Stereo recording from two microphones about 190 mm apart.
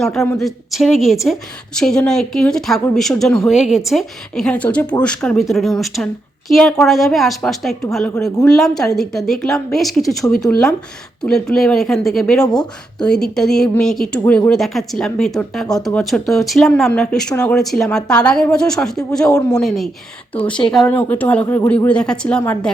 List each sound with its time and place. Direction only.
0.0 s a woman's voice: centre (ahead or behind); by 21.7 s 20° left (ahead or behind)
21.8 s a woman's voice: 5° left (ahead or behind)